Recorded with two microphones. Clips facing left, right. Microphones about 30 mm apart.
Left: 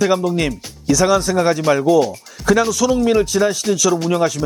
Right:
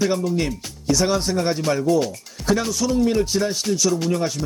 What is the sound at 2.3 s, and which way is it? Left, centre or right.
Music, centre.